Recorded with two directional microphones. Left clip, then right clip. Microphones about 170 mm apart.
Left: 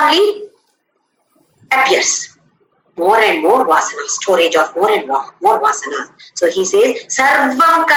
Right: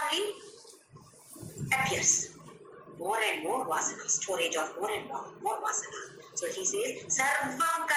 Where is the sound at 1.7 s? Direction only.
65° left (ahead or behind).